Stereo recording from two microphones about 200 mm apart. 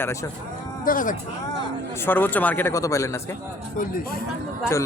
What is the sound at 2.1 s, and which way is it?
Speech, 10° left (ahead or behind).